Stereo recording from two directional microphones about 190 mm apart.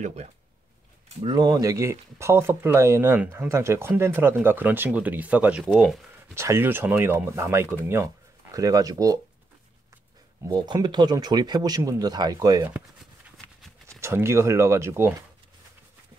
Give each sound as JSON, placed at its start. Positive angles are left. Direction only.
{"t": 0.0, "sound": "speech", "side_deg": -35}
{"t": 1.2, "sound": "speech", "side_deg": -20}
{"t": 6.3, "sound": "speech", "side_deg": -15}
{"t": 10.4, "sound": "speech", "side_deg": -20}
{"t": 13.8, "sound": "speech", "side_deg": -15}